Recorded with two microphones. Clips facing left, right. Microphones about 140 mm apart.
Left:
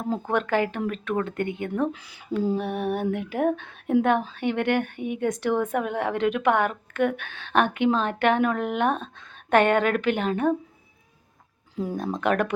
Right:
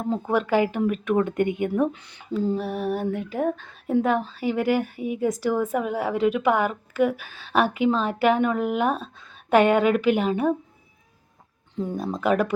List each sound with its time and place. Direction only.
0.1 s speech: 5° right (ahead or behind)
1.9 s speech: 5° left (ahead or behind)
11.8 s speech: 5° left (ahead or behind)